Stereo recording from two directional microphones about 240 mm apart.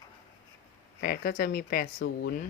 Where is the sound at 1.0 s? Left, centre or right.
Left.